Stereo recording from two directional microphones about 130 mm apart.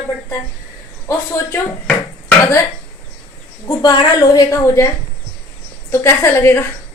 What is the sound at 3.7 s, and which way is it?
A woman's voice, 30° left (ahead or behind).